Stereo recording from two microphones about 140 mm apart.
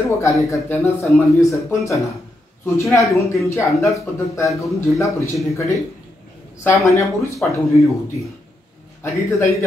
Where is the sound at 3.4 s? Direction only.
20° left (ahead or behind).